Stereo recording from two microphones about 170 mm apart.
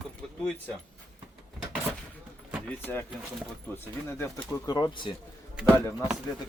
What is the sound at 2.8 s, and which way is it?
Speech, 10° left (ahead or behind).